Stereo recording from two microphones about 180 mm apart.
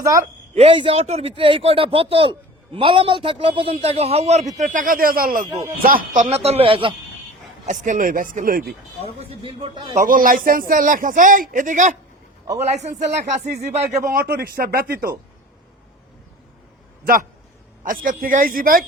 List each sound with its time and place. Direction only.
0.0 s a woman's voice: 15° right (ahead or behind)
0.5 s a man's voice: 30° right (ahead or behind); by 5.5 s 50° right (ahead or behind)
5.5 s a man's voice: 20° right (ahead or behind)
5.8 s a man's voice: 50° right (ahead or behind)
6.2 s a man's voice: 35° right (ahead or behind)
7.6 s a man's voice: 45° right (ahead or behind)
9.0 s a man's voice: 30° right (ahead or behind)
9.9 s a man's voice: 50° right (ahead or behind)
14.0 s speech: 55° right (ahead or behind)
17.8 s a man's voice: 50° right (ahead or behind)